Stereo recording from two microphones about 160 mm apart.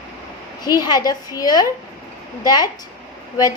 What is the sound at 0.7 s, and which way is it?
A woman's voice, 25° left (ahead or behind).